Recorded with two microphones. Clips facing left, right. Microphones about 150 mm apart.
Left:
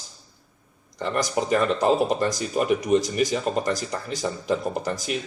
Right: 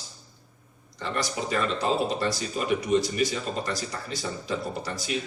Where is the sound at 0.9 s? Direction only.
45° left (ahead or behind).